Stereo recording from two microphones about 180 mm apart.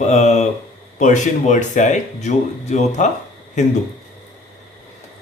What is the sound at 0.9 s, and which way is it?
Speech, 40° left (ahead or behind).